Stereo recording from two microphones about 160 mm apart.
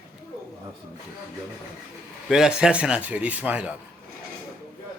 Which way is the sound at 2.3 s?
5° right (ahead or behind).